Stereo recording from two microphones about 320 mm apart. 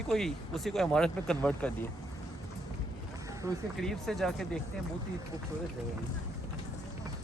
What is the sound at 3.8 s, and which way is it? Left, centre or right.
Speech, centre.